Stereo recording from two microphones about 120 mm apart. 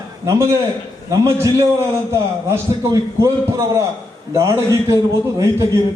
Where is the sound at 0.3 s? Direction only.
25° right (ahead or behind).